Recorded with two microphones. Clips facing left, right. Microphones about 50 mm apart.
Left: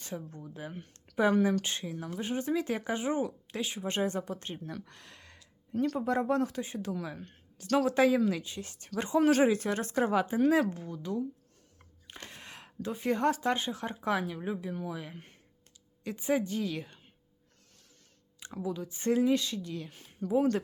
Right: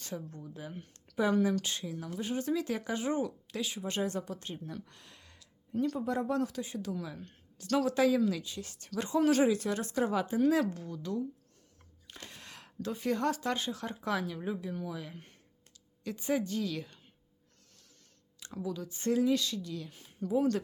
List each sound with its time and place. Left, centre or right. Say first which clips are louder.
0.3 s speech: left 2 dB; left
4.7 s speech: left 2 dB; left
18.3 s speech: left 2 dB; left